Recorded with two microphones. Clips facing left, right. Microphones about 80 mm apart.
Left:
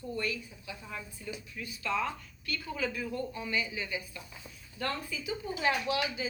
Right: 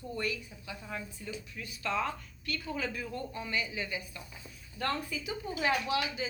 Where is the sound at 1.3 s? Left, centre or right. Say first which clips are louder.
Even; right.